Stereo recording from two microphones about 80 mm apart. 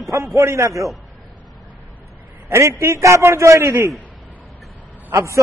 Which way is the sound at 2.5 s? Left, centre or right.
Right.